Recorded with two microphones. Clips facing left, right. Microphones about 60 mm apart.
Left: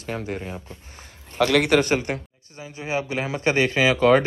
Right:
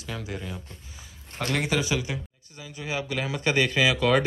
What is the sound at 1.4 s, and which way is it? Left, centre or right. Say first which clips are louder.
Speech: left 8 dB; left.